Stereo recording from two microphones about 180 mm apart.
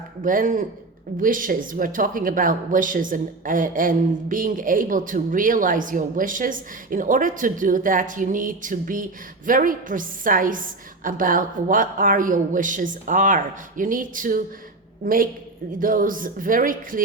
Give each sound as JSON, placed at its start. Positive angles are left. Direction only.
{"t": 0.2, "sound": "speech", "side_deg": -45}